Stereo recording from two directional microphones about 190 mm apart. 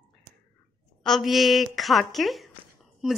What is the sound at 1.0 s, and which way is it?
A woman's voice, centre (ahead or behind).